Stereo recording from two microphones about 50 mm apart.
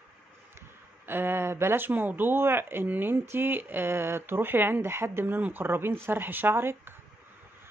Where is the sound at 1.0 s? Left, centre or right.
Right.